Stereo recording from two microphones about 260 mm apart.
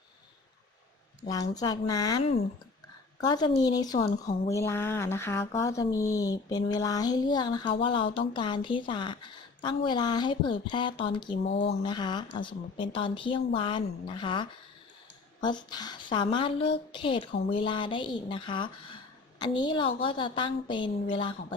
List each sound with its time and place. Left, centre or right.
1.3 s speech: centre
11.4 s speech: left
11.8 s speech: centre